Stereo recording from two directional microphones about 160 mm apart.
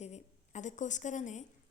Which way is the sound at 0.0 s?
45° left (ahead or behind).